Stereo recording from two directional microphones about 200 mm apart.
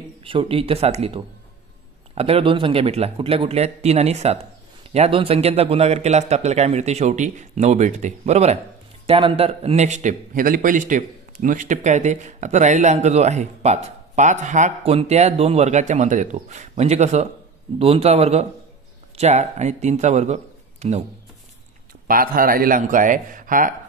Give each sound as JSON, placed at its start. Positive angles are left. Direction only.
{"t": 0.2, "sound": "a man's voice", "side_deg": -25}
{"t": 22.0, "sound": "a man's voice", "side_deg": -45}